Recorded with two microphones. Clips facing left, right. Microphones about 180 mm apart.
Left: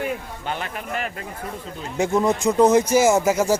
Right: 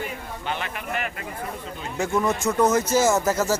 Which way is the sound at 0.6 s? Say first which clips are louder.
Left 1 dB; 35° left (ahead or behind).